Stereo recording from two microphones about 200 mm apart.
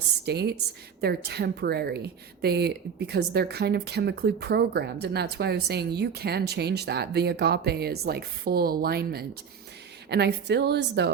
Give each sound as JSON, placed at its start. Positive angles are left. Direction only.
{"t": 0.3, "sound": "a woman's voice", "side_deg": -55}